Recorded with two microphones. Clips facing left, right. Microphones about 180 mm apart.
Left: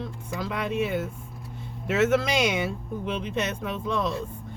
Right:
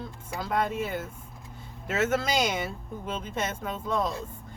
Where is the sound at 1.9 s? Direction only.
65° left (ahead or behind).